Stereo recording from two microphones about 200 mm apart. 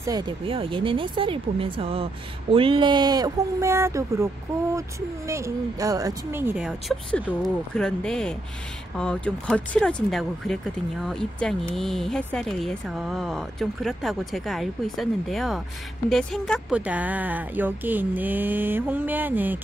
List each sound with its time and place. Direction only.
0.0 s speech: 20° right (ahead or behind)
5.3 s speech: 15° right (ahead or behind)